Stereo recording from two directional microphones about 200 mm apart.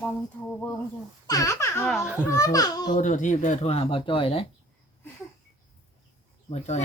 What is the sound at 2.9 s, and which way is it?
Speech, 40° left (ahead or behind).